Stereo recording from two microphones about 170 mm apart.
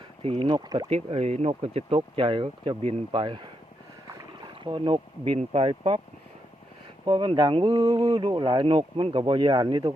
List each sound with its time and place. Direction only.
0.2 s speech: 30° right (ahead or behind)
0.9 s speech: 40° right (ahead or behind)
4.6 s speech: 30° right (ahead or behind)
7.0 s speech: 25° right (ahead or behind)